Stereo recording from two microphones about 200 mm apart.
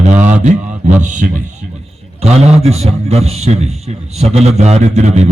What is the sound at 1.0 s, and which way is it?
A man's voice, 40° right (ahead or behind).